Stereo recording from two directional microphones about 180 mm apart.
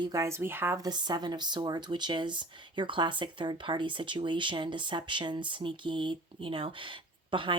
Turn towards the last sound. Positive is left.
turn(degrees=-25)  # may be behind; listen again after turning